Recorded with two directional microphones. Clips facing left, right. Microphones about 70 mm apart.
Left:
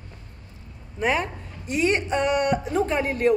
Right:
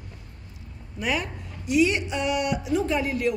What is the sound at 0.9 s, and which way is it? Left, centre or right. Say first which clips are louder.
A woman's voice: left 4 dB; left.